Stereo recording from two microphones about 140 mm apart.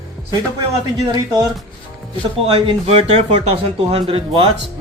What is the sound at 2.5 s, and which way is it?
A man's voice, 40° right (ahead or behind).